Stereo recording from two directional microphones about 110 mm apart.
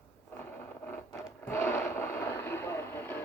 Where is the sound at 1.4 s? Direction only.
20° left (ahead or behind).